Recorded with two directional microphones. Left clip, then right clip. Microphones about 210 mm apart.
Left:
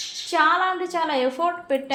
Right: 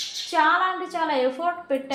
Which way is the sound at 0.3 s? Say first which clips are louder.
Left 1 dB; 35° left (ahead or behind).